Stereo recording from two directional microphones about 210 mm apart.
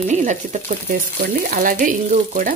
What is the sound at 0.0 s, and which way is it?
Speech, 35° right (ahead or behind).